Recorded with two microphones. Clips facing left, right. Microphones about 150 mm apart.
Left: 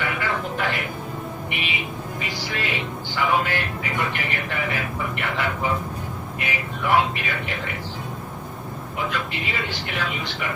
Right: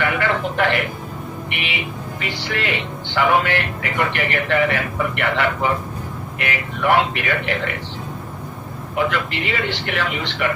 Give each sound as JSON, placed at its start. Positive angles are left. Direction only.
{"t": 0.0, "sound": "music", "side_deg": -70}
{"t": 1.5, "sound": "a man's voice", "side_deg": -70}
{"t": 9.0, "sound": "a man's voice", "side_deg": -70}